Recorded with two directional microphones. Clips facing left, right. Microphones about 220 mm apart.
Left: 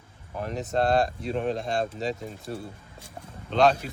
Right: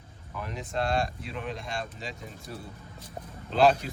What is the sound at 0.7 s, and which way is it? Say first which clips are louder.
Speech: left 5 dB; 35° left (ahead or behind).